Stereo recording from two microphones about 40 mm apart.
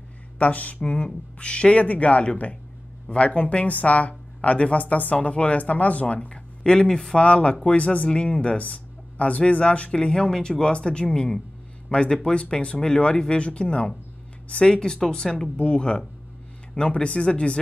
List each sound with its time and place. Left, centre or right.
0.4 s speech: left
6.2 s speech: left
7.2 s speech: left
8.1 s speech: left
8.5 s a sound: left
9.5 s speech: left; by 15.5 s centre
15.5 s speech: left